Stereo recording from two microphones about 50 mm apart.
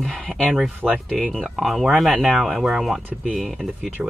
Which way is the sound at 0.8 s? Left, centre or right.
Right.